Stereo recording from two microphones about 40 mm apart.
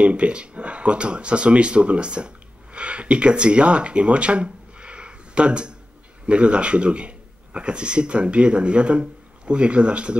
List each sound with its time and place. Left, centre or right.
0.0 s speech: right